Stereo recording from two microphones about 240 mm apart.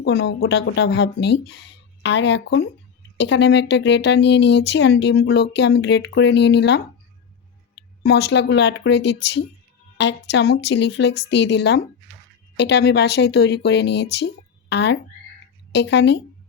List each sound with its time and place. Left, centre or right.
0.0 s speech: left
8.0 s speech: left